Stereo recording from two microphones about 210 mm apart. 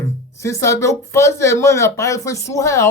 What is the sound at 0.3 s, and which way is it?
Speech, 15° left (ahead or behind).